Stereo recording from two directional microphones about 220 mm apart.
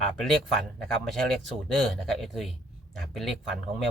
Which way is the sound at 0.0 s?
Centre (ahead or behind).